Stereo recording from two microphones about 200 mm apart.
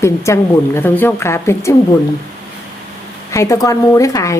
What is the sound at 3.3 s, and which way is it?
A woman's voice, 15° left (ahead or behind).